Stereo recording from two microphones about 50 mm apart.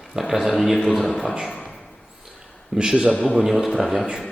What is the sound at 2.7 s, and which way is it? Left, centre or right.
A man's voice, centre.